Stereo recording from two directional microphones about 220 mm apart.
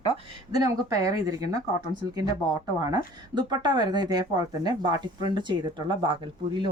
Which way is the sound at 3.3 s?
20° right (ahead or behind).